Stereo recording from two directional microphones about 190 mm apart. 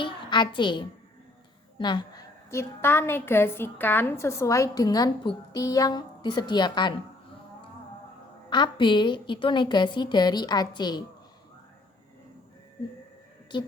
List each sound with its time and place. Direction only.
0.0 s a child's voice: 25° left (ahead or behind)
8.4 s a woman's voice: 25° left (ahead or behind)